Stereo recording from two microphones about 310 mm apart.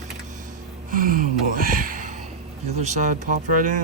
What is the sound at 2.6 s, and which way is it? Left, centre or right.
Speech, right.